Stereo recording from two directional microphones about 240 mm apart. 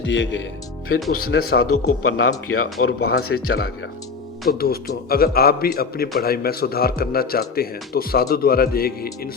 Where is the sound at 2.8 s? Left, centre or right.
Left.